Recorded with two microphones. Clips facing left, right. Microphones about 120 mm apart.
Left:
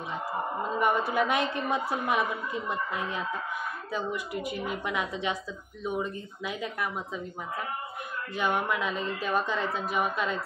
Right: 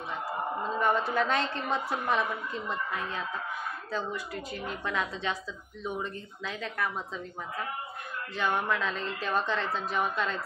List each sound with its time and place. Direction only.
0.7 s a woman's voice: 15° left (ahead or behind)
8.4 s a woman's voice: 15° left (ahead or behind)